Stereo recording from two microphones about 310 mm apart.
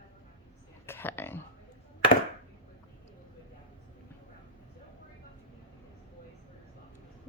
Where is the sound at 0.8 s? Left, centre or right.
Centre.